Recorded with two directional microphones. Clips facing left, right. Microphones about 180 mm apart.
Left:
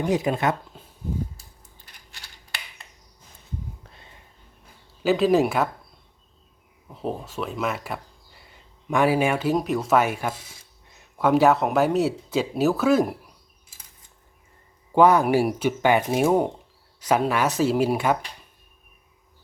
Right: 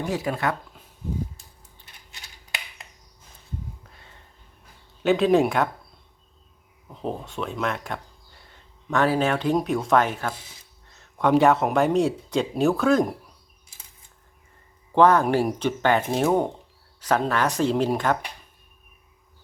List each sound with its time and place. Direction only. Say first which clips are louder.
0.1 s speech: left 4 dB; 20° left (ahead or behind)
5.0 s speech: even; centre (ahead or behind)
6.8 s speech: left 1 dB; 5° left (ahead or behind)
10.8 s a sound: left 1 dB; 15° left (ahead or behind)
11.2 s speech: even; 5° left (ahead or behind)
14.9 s speech: left 1 dB; 10° left (ahead or behind)